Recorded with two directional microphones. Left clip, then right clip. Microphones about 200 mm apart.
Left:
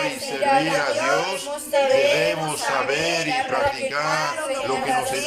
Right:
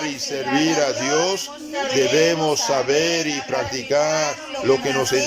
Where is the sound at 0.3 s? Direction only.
35° right (ahead or behind).